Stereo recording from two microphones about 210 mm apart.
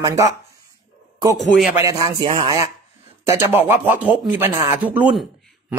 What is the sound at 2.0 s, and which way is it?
Speech, 15° right (ahead or behind).